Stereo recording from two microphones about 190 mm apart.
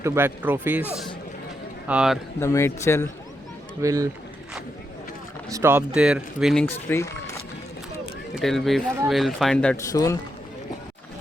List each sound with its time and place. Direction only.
0.0 s speech: 15° right (ahead or behind)
1.9 s speech: 5° right (ahead or behind)
2.4 s a man's voice: 15° left (ahead or behind)
3.8 s speech: 15° right (ahead or behind)
5.5 s speech: 15° right (ahead or behind); by 6.7 s 5° left (ahead or behind)
6.8 s speech: 15° left (ahead or behind)
8.4 s speech: centre (ahead or behind)
9.9 s a man's voice: 15° left (ahead or behind)